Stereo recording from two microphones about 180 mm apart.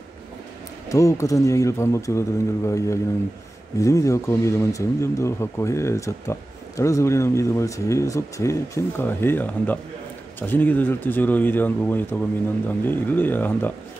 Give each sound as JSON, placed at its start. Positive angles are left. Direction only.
{"t": 0.8, "sound": "speech", "side_deg": 15}